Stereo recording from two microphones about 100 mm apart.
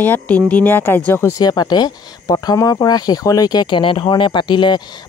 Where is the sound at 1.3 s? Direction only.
45° left (ahead or behind).